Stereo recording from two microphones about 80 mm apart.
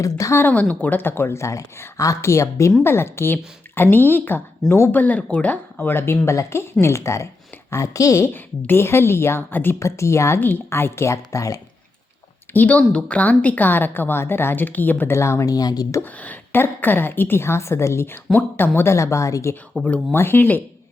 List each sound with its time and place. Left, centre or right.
0.0 s speech: left
0.3 s a woman's voice: left
5.9 s speech: left
8.3 s speech: left
9.7 s speech: left
12.5 s a woman's voice: centre; by 15.4 s left
15.4 s speech: left
16.1 s a woman's voice: left
19.8 s a woman's voice: centre